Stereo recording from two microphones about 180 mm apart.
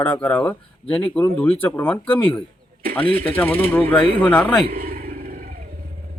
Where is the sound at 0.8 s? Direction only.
30° left (ahead or behind).